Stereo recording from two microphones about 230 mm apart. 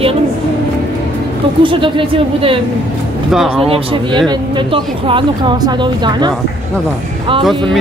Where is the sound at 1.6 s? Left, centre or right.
Right.